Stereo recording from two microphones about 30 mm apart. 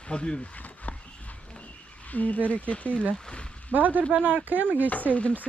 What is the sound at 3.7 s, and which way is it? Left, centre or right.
Speech, right.